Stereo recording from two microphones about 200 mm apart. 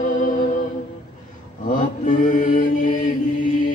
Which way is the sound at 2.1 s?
40° left (ahead or behind).